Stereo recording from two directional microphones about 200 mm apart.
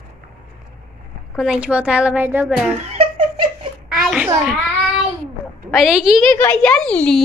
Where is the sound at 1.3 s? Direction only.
5° right (ahead or behind).